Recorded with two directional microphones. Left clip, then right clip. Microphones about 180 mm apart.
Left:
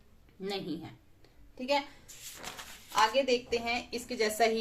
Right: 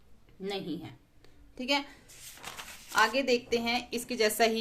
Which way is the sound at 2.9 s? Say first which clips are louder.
Right 1 dB; 50° right (ahead or behind).